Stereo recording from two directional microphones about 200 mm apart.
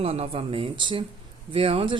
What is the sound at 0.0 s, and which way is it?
A woman's voice, 30° right (ahead or behind).